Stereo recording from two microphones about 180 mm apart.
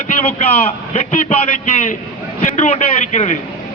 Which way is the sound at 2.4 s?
40° left (ahead or behind).